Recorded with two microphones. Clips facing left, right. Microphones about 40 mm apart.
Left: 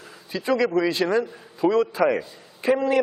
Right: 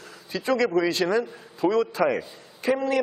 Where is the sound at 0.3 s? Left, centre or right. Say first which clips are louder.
Left 1 dB; centre.